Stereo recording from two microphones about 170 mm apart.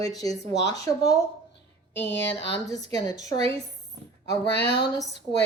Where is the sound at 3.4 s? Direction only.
35° right (ahead or behind).